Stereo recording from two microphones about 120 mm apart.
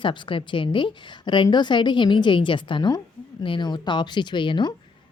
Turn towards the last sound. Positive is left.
turn(degrees=40)  # may be behind; listen again after turning